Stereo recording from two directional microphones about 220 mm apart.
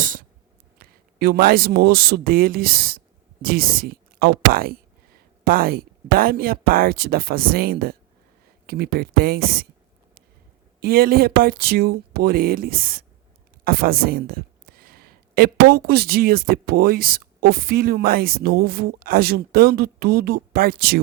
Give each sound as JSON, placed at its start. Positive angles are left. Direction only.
{"t": 0.0, "sound": "a sound", "side_deg": -40}
{"t": 0.8, "sound": "a man's voice", "side_deg": -45}
{"t": 10.8, "sound": "speech", "side_deg": -45}